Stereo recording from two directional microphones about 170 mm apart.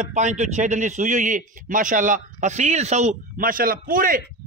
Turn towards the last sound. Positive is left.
turn(degrees=-55)  # may be behind; listen again after turning